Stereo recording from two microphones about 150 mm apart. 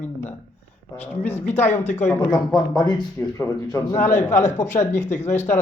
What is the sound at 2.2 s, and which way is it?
Speech, 30° left (ahead or behind).